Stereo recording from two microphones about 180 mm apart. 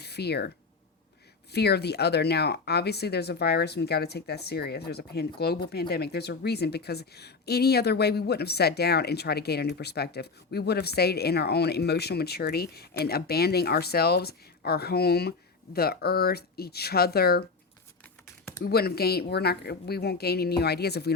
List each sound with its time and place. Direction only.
0.0 s speech: 65° left (ahead or behind)
1.5 s speech: 65° left (ahead or behind)
18.6 s speech: 60° left (ahead or behind)